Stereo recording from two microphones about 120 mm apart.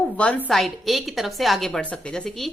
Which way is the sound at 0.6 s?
Centre (ahead or behind).